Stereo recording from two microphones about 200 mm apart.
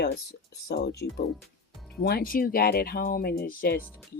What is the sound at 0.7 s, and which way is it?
Speech, 55° left (ahead or behind).